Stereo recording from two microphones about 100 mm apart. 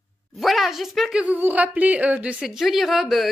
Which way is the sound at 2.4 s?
5° right (ahead or behind).